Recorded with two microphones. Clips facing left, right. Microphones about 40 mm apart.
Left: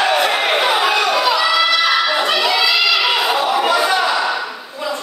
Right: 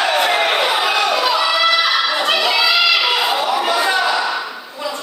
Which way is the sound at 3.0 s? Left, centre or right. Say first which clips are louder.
Left 1 dB; centre.